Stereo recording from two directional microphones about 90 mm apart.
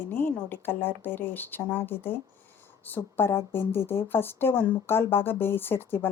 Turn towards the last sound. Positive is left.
turn(degrees=25)  # may be behind; listen again after turning